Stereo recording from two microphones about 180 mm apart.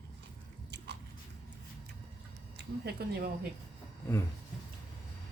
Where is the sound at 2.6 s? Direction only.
65° right (ahead or behind).